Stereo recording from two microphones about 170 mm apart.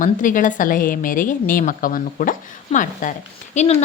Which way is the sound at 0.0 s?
50° left (ahead or behind).